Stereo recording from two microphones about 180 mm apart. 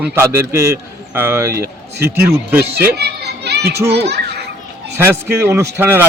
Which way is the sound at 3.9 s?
70° right (ahead or behind).